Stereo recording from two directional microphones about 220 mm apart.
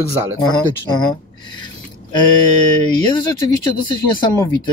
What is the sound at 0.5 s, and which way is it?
Speech, 20° left (ahead or behind).